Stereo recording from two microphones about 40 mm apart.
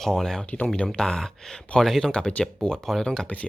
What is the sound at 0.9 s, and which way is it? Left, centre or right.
Speech, centre.